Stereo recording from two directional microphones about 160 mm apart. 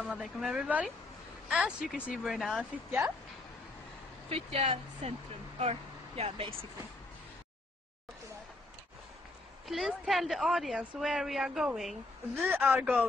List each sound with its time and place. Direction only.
0.0 s a woman's voice: 5° right (ahead or behind)
4.3 s speech: 40° right (ahead or behind)
9.7 s a woman's voice: centre (ahead or behind)